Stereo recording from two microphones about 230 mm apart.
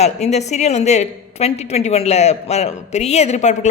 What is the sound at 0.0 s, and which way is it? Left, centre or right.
A woman's voice, left.